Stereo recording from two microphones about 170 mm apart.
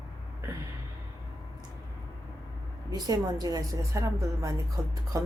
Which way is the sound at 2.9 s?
25° right (ahead or behind).